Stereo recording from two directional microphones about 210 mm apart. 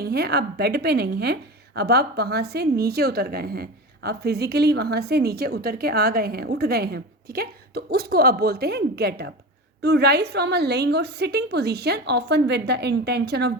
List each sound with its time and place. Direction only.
0.0 s a woman's voice: 50° right (ahead or behind)